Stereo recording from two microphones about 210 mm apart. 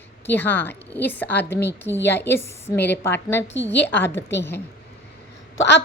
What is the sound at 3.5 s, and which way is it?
Speech, 60° left (ahead or behind).